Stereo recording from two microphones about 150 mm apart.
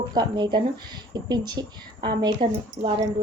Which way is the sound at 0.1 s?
30° right (ahead or behind).